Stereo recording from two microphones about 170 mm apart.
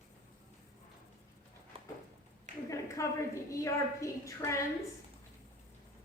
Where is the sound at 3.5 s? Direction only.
20° left (ahead or behind).